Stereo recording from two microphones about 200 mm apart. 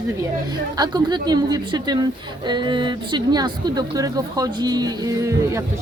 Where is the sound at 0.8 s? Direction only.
20° right (ahead or behind).